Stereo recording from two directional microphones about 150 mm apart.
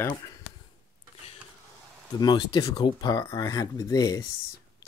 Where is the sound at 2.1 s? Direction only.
30° left (ahead or behind).